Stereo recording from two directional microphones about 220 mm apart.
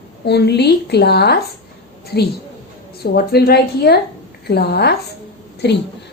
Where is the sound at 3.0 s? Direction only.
45° left (ahead or behind).